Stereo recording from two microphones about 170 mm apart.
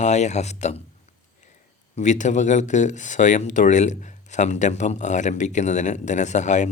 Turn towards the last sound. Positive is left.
turn(degrees=45)  # may be behind; listen again after turning